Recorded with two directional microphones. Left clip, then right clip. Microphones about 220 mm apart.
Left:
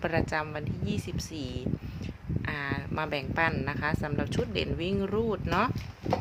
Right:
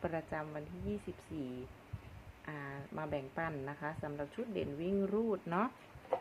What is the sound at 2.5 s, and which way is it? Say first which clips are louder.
Speech: left 12 dB; 30° left (ahead or behind).